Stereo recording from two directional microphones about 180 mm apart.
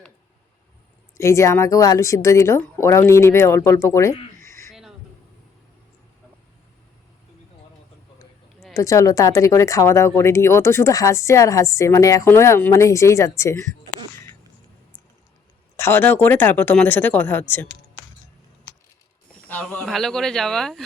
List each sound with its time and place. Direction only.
1.1 s speech: 15° left (ahead or behind)
4.4 s a sound: 15° left (ahead or behind)
8.7 s speech: 20° left (ahead or behind)
15.7 s speech: 10° left (ahead or behind)
19.5 s speech: 10° left (ahead or behind)